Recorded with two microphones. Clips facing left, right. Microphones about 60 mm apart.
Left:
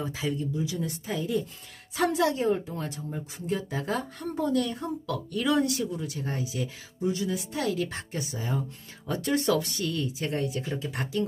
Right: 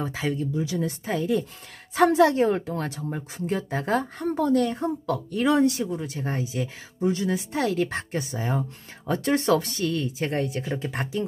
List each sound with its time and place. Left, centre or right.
0.2 s speech: right
4.6 s speech: right
7.1 s speech: right
10.6 s speech: right